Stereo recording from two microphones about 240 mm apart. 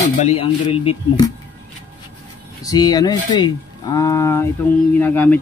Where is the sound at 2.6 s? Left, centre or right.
Centre.